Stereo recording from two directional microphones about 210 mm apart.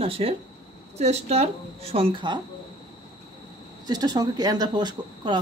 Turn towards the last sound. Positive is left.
turn(degrees=-20)  # may be behind; listen again after turning